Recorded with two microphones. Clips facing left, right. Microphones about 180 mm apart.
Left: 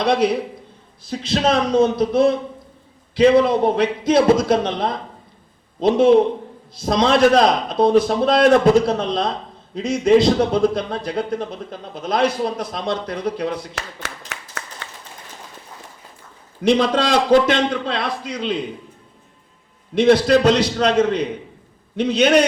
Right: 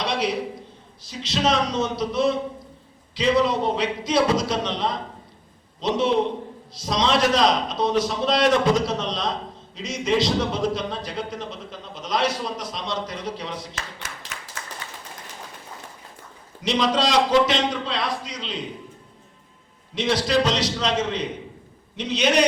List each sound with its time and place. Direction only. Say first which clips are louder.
0.0 s a man's voice: left 7 dB; 55° left (ahead or behind)
14.6 s clapping: left 5 dB; 70° left (ahead or behind)
16.6 s a man's voice: left 5 dB; 55° left (ahead or behind)
20.0 s a man's voice: left 8 dB; 55° left (ahead or behind)